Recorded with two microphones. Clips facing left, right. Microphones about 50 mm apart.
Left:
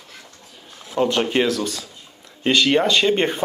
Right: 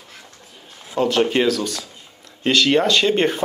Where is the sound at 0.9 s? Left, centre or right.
Centre.